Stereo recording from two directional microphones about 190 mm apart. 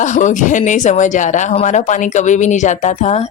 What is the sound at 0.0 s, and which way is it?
Speech, 40° left (ahead or behind).